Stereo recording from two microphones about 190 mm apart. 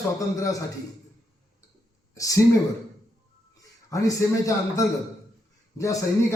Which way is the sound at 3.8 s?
15° left (ahead or behind).